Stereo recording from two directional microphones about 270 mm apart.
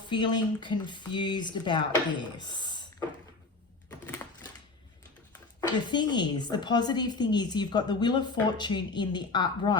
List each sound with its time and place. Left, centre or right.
0.1 s a woman's voice: centre
3.8 s typewriter: centre
5.5 s a woman's voice: centre